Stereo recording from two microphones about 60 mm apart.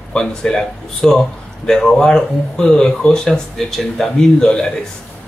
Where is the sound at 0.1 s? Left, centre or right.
Centre.